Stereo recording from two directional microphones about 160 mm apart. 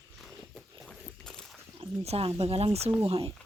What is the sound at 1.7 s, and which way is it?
Speech, 40° right (ahead or behind).